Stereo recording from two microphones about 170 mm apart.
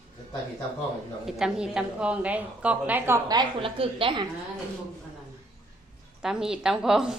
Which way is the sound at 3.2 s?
30° right (ahead or behind).